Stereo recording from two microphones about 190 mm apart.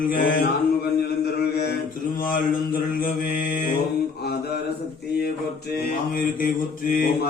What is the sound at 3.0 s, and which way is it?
Mantra, 50° left (ahead or behind).